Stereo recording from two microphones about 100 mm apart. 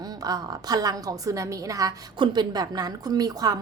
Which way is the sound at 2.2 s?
45° right (ahead or behind).